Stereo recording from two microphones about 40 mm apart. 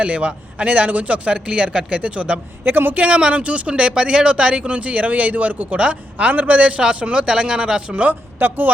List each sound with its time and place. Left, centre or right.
0.0 s speech: right
2.6 s speech: right
2.9 s speech: right
8.4 s speech: right